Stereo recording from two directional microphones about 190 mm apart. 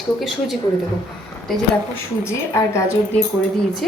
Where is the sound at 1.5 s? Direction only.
Centre (ahead or behind).